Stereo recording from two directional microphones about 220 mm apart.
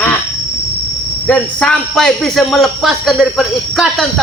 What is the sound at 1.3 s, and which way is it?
Speech, 5° left (ahead or behind).